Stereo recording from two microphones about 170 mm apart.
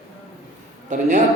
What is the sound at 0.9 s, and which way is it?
Speech, 45° right (ahead or behind).